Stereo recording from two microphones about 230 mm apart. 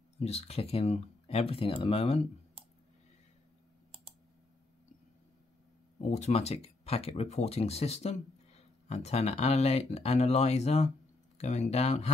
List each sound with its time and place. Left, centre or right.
0.2 s speech: left
5.9 s speech: left